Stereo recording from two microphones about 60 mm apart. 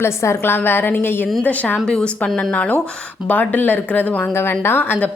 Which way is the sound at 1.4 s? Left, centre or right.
Left.